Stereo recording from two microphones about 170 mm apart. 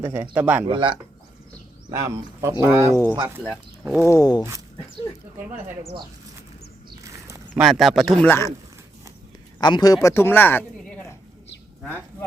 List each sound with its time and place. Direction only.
0.0 s speech: 10° right (ahead or behind)
0.7 s speech: 30° right (ahead or behind)
1.9 s speech: 15° right (ahead or behind)
2.9 s speech: 10° left (ahead or behind)
3.2 s speech: 10° right (ahead or behind)
4.0 s a sound: 20° left (ahead or behind)
7.0 s a sound: 20° right (ahead or behind)
7.6 s speech: centre (ahead or behind)
8.3 s speech: 15° left (ahead or behind)
9.6 s a man's voice: 25° left (ahead or behind)